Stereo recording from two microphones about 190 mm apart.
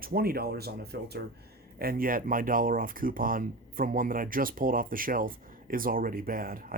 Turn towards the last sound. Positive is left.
turn(degrees=-50)  # may be behind; listen again after turning